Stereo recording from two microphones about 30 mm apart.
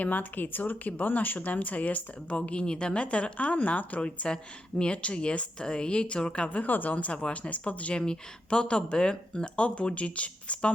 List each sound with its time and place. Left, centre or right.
0.0 s speech: left
1.4 s speech: left
2.5 s speech: left
3.3 s speech: left
4.8 s speech: left
6.5 s speech: left
6.9 s speech: left
7.9 s speech: left